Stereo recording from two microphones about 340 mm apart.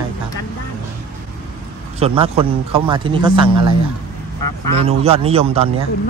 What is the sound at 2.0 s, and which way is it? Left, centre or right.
A man's voice, centre.